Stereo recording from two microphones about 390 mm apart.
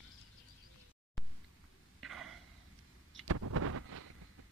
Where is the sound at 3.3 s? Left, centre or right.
Right.